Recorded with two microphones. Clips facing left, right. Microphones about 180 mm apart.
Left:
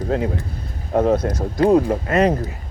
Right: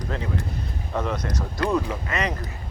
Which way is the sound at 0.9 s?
50° left (ahead or behind).